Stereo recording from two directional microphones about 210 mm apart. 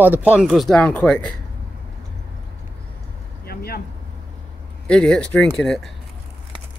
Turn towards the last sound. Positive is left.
turn(degrees=5)  # may be behind; listen again after turning